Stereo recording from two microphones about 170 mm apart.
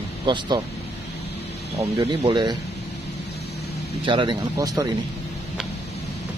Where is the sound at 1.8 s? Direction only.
20° right (ahead or behind).